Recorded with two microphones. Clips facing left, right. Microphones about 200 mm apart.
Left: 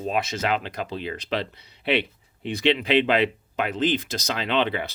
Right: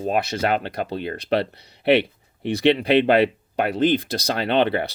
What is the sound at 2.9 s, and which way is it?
Speech, 55° right (ahead or behind).